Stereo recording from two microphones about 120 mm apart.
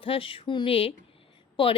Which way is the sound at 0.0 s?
50° left (ahead or behind).